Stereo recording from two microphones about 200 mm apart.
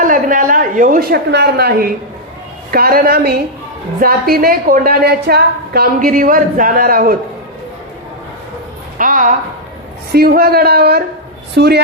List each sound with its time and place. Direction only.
0.0 s a woman's voice: 40° right (ahead or behind)
9.0 s a woman's voice: 45° right (ahead or behind)